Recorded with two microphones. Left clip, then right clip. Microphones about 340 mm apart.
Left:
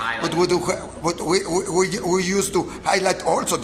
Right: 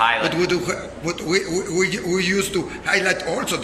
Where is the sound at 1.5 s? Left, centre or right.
Left.